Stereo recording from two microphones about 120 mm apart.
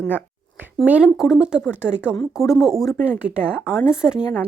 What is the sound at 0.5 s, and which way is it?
A woman's voice, 10° right (ahead or behind).